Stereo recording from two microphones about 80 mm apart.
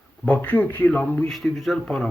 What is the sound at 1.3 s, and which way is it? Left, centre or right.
Speech, centre.